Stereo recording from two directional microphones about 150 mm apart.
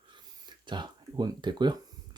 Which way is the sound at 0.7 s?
30° right (ahead or behind).